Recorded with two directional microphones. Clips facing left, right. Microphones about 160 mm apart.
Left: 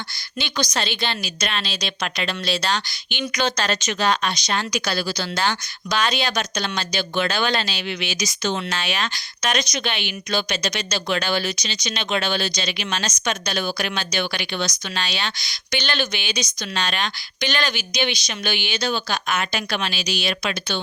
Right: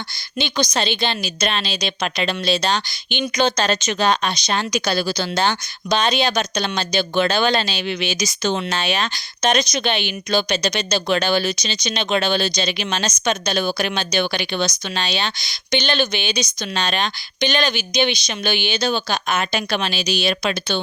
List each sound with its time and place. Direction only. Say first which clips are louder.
0.3 s speech: right 4 dB; 20° right (ahead or behind)
1.6 s speech: right 4 dB; 15° right (ahead or behind)